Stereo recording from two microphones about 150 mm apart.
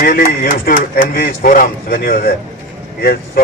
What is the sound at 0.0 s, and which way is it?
A man's voice, 75° left (ahead or behind).